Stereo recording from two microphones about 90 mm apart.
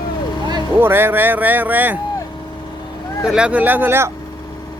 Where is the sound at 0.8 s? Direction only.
25° right (ahead or behind).